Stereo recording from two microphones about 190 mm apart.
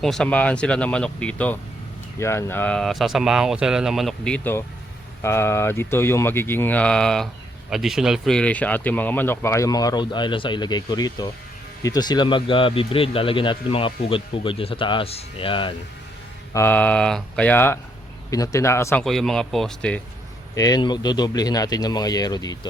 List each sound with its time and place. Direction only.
0.0 s speech: 5° left (ahead or behind); by 15.7 s 25° left (ahead or behind)
16.5 s speech: 10° left (ahead or behind)
19.0 s speech: centre (ahead or behind)
20.6 s speech: 20° left (ahead or behind)